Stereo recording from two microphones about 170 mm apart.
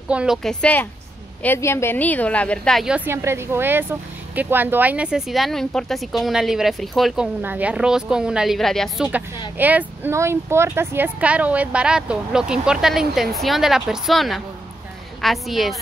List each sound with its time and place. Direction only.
0.1 s a woman's voice: 5° right (ahead or behind)
3.1 s a woman's voice: 15° right (ahead or behind)